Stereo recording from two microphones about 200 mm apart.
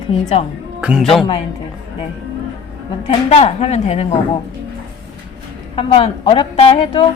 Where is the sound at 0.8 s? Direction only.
5° right (ahead or behind).